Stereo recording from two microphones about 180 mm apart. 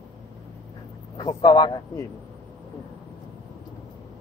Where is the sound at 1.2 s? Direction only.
25° left (ahead or behind).